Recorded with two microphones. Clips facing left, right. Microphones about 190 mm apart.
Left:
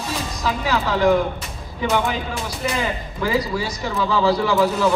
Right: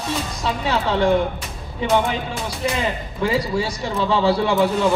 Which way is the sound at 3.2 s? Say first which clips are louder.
Right 1 dB; 25° right (ahead or behind).